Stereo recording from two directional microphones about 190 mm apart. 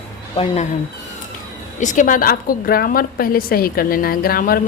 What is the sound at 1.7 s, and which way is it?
A woman's voice, 40° left (ahead or behind).